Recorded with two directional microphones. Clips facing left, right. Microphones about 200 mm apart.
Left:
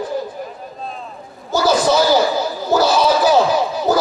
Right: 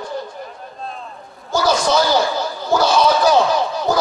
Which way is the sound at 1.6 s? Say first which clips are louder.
Left 3 dB; 5° left (ahead or behind).